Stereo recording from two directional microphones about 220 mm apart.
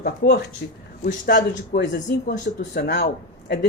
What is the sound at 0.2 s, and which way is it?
Speech, 50° left (ahead or behind).